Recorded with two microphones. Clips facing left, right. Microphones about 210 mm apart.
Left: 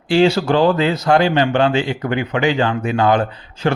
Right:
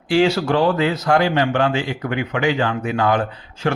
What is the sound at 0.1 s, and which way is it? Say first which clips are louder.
Speech: left 2 dB; 30° left (ahead or behind).